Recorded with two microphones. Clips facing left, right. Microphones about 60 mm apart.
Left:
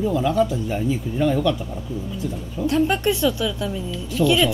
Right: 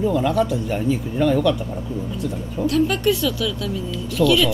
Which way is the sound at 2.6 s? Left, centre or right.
Left.